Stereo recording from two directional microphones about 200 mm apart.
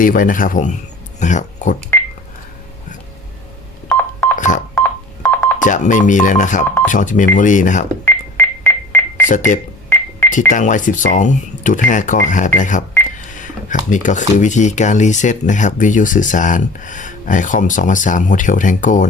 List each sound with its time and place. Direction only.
0.0 s speech: 45° left (ahead or behind)
1.9 s telephone dialing: 10° left (ahead or behind)
3.8 s telephone dialing: 5° left (ahead or behind)
4.4 s telephone dialing: 40° left (ahead or behind)
4.7 s telephone dialing: 5° left (ahead or behind)
5.5 s speech: 40° left (ahead or behind)
8.0 s telephone dialing: 10° left (ahead or behind)
9.3 s speech: 40° left (ahead or behind)
9.9 s telephone dialing: 10° left (ahead or behind)
10.3 s speech: 40° left (ahead or behind)